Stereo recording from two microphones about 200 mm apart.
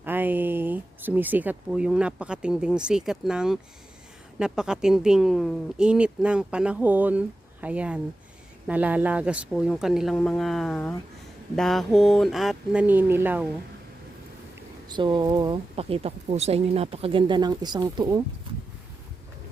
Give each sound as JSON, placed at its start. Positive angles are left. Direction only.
{"t": 0.0, "sound": "speech", "side_deg": -10}
{"t": 14.8, "sound": "speech", "side_deg": -20}